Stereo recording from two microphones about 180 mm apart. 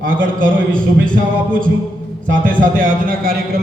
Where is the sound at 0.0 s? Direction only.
50° right (ahead or behind).